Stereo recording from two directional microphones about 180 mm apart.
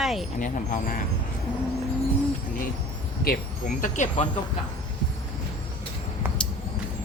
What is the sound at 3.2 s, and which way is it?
Speech, 50° left (ahead or behind).